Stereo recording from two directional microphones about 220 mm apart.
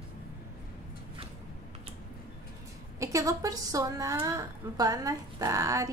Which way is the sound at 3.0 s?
15° right (ahead or behind).